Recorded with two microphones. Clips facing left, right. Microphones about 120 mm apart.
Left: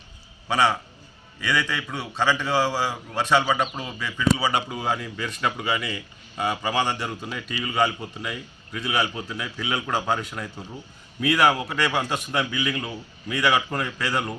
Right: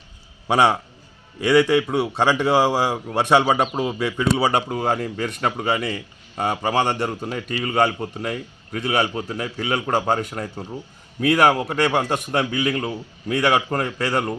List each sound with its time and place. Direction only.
0.4 s a man's voice: 60° right (ahead or behind)